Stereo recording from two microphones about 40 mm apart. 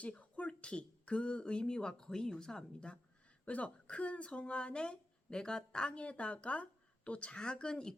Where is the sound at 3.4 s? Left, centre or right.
Left.